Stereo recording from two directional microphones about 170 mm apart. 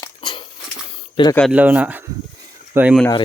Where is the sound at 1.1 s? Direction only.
25° left (ahead or behind).